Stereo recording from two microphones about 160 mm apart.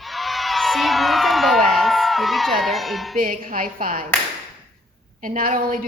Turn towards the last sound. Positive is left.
turn(degrees=-60)  # may be behind; listen again after turning